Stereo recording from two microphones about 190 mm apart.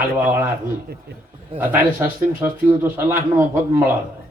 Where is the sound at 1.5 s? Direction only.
10° right (ahead or behind).